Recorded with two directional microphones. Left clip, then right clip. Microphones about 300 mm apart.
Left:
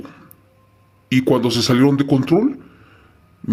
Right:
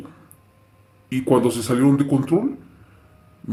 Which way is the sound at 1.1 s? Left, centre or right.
Left.